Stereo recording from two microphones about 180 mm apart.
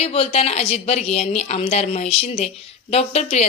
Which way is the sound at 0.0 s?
35° left (ahead or behind).